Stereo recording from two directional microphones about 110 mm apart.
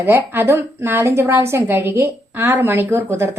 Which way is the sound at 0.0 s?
20° right (ahead or behind).